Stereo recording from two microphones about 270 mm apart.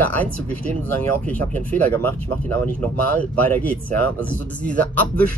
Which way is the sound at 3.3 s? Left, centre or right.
Centre.